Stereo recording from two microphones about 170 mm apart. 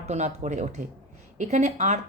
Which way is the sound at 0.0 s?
40° right (ahead or behind).